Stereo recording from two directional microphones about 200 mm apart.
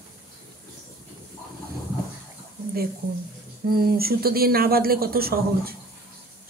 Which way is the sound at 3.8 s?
50° right (ahead or behind).